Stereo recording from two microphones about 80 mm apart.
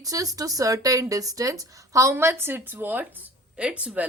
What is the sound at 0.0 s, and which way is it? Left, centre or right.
A woman's voice, right.